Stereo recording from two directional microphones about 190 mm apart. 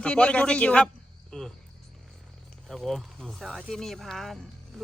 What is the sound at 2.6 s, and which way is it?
Speech, centre (ahead or behind).